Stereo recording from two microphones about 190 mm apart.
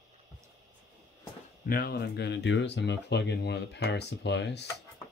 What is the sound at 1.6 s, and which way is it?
Speech, 50° left (ahead or behind).